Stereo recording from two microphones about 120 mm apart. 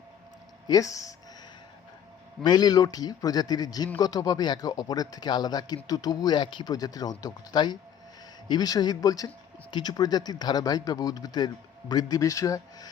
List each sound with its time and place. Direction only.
0.7 s speech: 30° left (ahead or behind)
2.4 s speech: 35° left (ahead or behind)